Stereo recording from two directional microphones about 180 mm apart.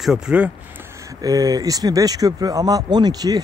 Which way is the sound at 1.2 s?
20° right (ahead or behind).